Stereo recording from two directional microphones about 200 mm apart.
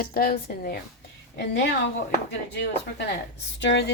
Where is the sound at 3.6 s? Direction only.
65° left (ahead or behind).